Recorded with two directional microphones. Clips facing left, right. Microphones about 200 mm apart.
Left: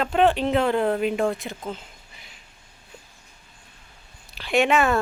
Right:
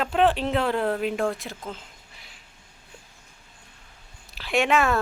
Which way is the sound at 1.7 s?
Centre (ahead or behind).